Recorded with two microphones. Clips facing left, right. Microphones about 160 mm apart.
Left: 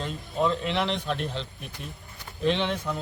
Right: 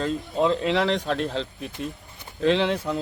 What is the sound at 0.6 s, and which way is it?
Speech, 90° right.